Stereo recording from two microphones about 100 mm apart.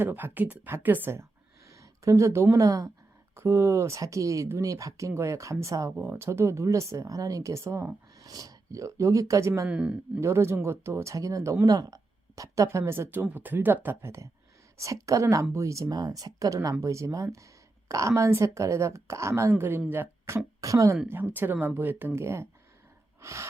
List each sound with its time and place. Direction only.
0.0 s a woman's voice: 20° right (ahead or behind)
1.7 s a woman's voice: 30° right (ahead or behind)
9.6 s speech: 10° right (ahead or behind)
10.2 s a woman's voice: 25° right (ahead or behind)
21.1 s a woman's voice: 20° right (ahead or behind)